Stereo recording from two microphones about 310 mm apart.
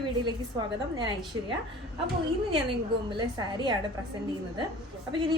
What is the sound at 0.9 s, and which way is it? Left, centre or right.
Speech, centre.